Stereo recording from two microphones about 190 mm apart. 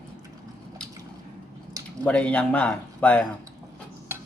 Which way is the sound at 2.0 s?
5° left (ahead or behind).